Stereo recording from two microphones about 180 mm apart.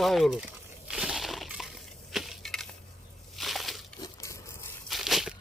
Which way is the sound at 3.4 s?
Centre (ahead or behind).